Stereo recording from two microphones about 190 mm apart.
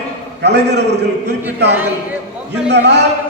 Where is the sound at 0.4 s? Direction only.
60° right (ahead or behind).